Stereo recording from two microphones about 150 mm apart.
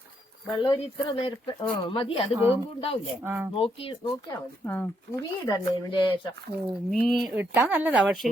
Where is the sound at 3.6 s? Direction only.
40° left (ahead or behind).